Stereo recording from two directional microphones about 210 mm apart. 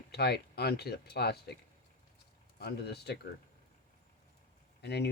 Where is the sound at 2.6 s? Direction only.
50° left (ahead or behind).